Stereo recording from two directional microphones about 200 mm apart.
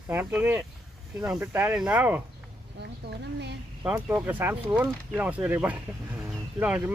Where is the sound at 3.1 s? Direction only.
55° right (ahead or behind).